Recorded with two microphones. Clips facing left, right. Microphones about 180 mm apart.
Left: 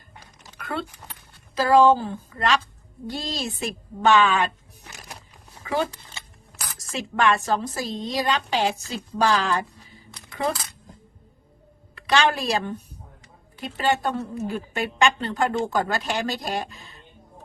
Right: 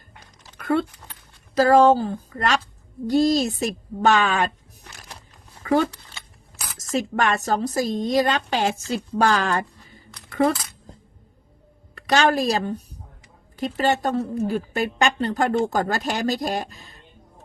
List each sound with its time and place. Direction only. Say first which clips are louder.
0.6 s a woman's voice: right 9 dB; 50° right (ahead or behind)
5.6 s speech: right 7 dB; 55° right (ahead or behind)
6.9 s a woman's voice: even; 40° right (ahead or behind)
11.9 s a woman's voice: right 3 dB; 45° right (ahead or behind)